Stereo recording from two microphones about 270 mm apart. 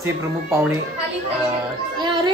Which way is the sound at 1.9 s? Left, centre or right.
Centre.